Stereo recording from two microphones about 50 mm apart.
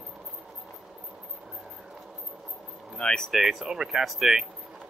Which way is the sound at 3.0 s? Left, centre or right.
Centre.